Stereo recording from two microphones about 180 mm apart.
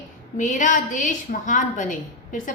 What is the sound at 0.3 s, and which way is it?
A woman's voice, 45° left (ahead or behind).